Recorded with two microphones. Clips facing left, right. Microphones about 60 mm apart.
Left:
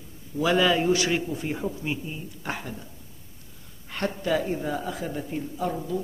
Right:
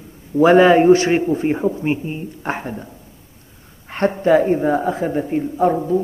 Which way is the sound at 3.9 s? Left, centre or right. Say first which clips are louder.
Right 11 dB; right.